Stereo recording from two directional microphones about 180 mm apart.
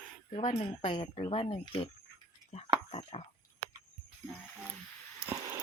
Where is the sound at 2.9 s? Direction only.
35° left (ahead or behind).